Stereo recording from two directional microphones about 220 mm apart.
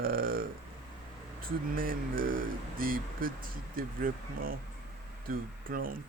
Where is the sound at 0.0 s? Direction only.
40° right (ahead or behind).